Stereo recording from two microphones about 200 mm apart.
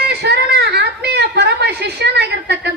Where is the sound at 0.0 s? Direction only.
55° right (ahead or behind).